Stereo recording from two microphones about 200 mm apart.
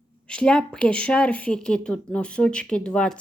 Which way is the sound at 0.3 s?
5° left (ahead or behind).